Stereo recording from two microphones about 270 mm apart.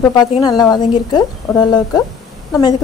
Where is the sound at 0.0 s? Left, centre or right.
Centre.